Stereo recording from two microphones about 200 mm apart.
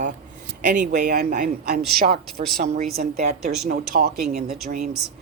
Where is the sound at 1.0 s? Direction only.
55° right (ahead or behind).